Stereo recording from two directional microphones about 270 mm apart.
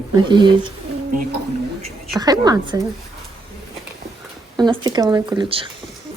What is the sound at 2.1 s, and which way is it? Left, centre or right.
Speech, centre.